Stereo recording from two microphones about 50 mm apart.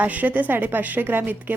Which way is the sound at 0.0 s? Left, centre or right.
Right.